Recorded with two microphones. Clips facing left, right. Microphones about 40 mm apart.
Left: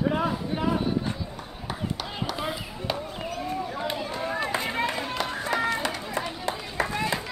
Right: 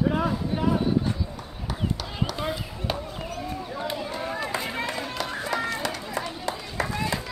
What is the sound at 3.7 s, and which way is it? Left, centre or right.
Run, left.